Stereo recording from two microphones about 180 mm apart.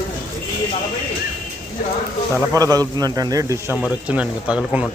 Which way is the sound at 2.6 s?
20° right (ahead or behind).